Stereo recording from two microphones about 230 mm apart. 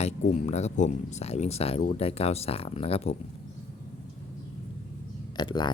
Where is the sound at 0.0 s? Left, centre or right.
Left.